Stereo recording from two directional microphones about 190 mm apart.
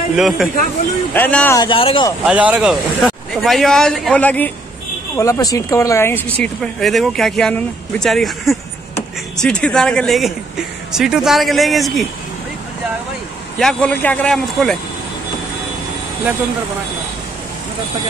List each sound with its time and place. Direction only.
0.1 s speech: centre (ahead or behind)
1.1 s speech: 10° left (ahead or behind)
1.6 s speech: 30° left (ahead or behind)
2.2 s speech: 5° right (ahead or behind)
13.6 s speech: 5° left (ahead or behind)